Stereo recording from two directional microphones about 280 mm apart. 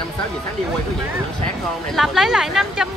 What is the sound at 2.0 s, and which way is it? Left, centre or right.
Speech, centre.